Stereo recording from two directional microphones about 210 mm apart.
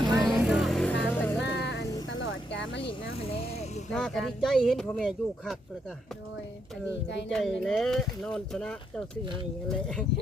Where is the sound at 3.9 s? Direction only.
Centre (ahead or behind).